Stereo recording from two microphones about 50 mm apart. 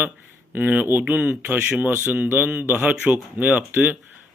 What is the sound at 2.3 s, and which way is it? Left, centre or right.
A man's voice, right.